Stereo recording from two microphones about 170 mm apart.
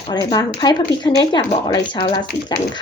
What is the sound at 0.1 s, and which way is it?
Speech, 25° left (ahead or behind).